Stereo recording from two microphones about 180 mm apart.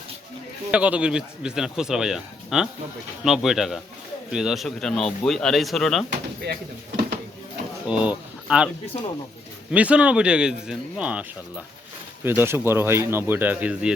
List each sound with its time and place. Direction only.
0.7 s a man's voice: 5° right (ahead or behind)
6.4 s speech: 65° right (ahead or behind)
7.9 s speech: 5° right (ahead or behind)
9.7 s speech: 5° right (ahead or behind)